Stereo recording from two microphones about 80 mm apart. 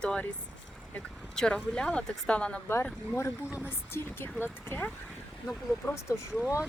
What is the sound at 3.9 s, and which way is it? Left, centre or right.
Speech, left.